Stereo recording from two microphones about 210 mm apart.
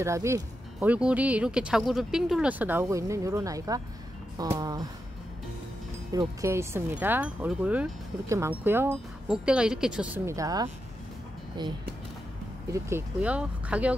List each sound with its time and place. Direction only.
0.0 s speech: 15° right (ahead or behind)
6.1 s speech: 15° right (ahead or behind)
12.7 s speech: 10° right (ahead or behind)